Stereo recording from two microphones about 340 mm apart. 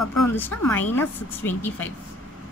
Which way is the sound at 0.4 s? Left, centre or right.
Centre.